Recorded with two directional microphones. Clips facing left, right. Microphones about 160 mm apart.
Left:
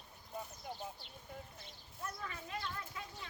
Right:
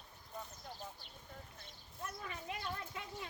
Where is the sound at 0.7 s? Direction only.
15° left (ahead or behind).